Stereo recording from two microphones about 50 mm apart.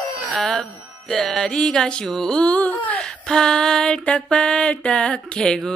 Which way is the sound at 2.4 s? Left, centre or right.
Left.